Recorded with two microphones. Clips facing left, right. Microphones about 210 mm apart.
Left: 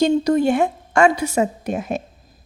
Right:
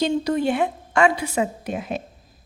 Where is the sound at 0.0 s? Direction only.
45° left (ahead or behind).